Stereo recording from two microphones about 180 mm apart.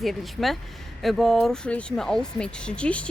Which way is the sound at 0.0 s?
Centre (ahead or behind).